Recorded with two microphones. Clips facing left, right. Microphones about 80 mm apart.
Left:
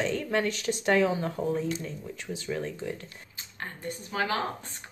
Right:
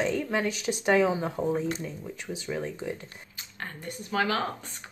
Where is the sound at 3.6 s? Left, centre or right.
Left.